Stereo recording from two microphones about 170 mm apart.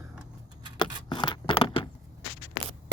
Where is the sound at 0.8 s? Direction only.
30° left (ahead or behind).